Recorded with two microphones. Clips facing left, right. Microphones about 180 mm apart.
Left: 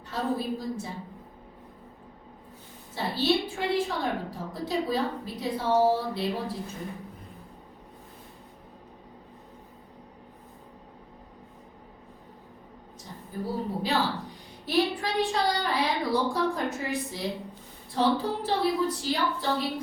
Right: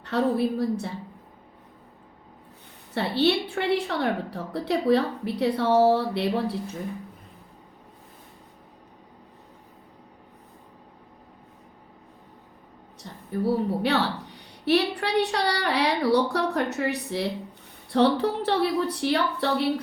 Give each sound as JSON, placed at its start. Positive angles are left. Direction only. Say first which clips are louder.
{"t": 0.0, "sound": "a woman's voice", "louder": "right 6 dB", "side_deg": -70}
{"t": 2.9, "sound": "a woman's voice", "louder": "right 3 dB", "side_deg": -65}
{"t": 13.0, "sound": "a woman's voice", "louder": "right 7 dB", "side_deg": -70}